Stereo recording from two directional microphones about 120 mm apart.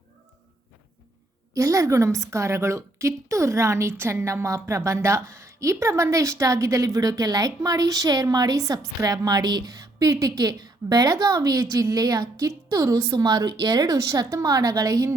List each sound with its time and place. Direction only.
1.5 s a woman's voice: 25° right (ahead or behind)